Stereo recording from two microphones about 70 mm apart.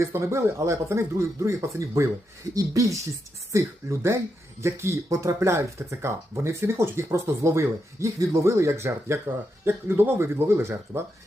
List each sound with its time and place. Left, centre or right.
0.0 s speech: right
3.5 s speech: right